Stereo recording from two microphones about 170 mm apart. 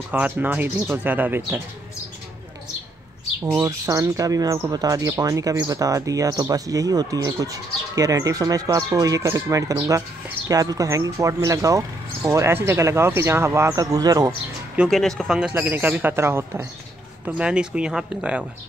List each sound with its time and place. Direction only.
0.1 s speech: 10° right (ahead or behind)
3.6 s speech: 20° right (ahead or behind)
14.8 s speech: centre (ahead or behind)